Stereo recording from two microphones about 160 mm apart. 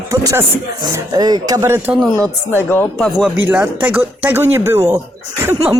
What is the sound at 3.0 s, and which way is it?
Speech, centre (ahead or behind).